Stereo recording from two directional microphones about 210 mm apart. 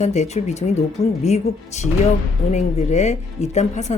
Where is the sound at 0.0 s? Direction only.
35° left (ahead or behind).